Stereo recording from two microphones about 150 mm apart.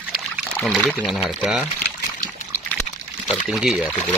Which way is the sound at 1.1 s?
5° right (ahead or behind).